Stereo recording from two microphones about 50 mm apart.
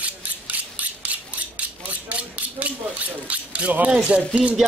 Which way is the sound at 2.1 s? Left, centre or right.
Right.